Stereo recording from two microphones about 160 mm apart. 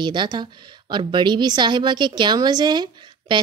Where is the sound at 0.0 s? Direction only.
30° right (ahead or behind).